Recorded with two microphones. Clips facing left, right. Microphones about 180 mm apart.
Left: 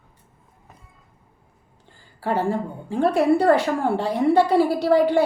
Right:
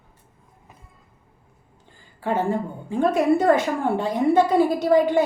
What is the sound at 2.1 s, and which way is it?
A woman's voice, 20° right (ahead or behind).